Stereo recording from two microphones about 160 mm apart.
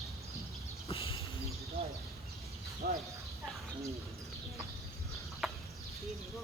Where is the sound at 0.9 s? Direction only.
35° left (ahead or behind).